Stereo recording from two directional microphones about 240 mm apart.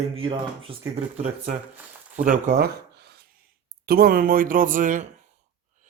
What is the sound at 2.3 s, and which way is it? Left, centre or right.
Speech, right.